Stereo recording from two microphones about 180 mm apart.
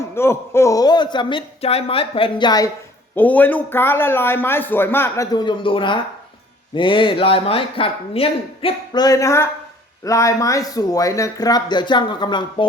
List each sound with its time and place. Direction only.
0.0 s speech: 15° left (ahead or behind)
3.2 s a man's voice: 10° left (ahead or behind); by 12.6 s 25° left (ahead or behind)